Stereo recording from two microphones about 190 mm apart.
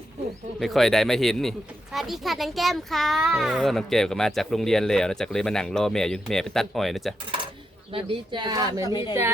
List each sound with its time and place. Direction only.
0.6 s speech: centre (ahead or behind)
7.9 s speech: 25° right (ahead or behind)
8.8 s speech: 20° left (ahead or behind)